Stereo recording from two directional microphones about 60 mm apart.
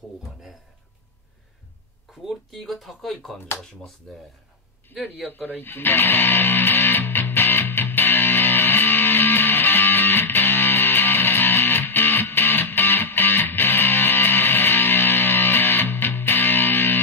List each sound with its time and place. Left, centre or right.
2.2 s speech: centre
5.6 s music: left